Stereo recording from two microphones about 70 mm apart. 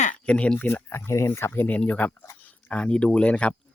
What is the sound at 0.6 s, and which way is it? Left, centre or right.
A woman's voice, left.